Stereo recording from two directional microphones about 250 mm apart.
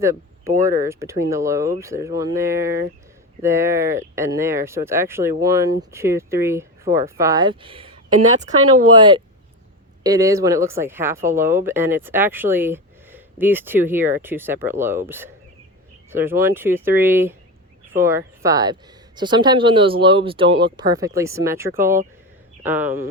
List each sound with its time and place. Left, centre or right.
0.0 s speech: centre
0.5 s speech: right
0.9 s speech: centre
9.0 s speech: centre